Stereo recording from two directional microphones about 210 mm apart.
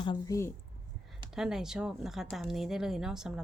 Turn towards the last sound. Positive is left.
turn(degrees=0)  # may be behind; listen again after turning